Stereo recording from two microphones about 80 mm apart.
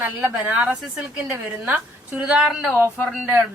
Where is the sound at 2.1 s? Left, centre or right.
Centre.